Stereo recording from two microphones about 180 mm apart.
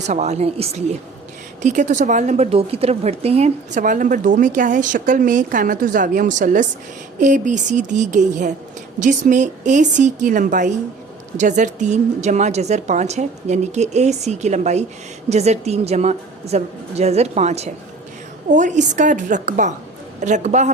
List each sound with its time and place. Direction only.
0.0 s a woman's voice: 40° right (ahead or behind)